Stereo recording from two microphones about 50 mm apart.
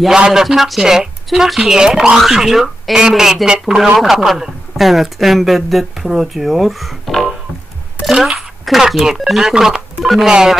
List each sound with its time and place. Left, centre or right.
0.1 s speech: centre